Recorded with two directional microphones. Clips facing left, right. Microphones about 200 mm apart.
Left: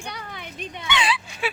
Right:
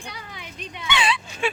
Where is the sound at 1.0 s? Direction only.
Centre (ahead or behind).